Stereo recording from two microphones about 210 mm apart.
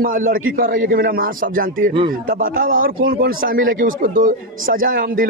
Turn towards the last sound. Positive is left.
turn(degrees=-40)  # may be behind; listen again after turning